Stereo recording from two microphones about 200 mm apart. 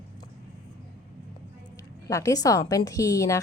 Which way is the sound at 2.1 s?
15° left (ahead or behind).